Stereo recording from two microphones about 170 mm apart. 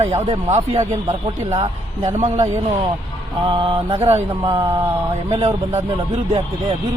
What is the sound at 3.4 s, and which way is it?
Speech, 30° right (ahead or behind).